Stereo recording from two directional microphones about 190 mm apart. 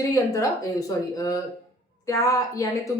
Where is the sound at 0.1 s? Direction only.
15° left (ahead or behind).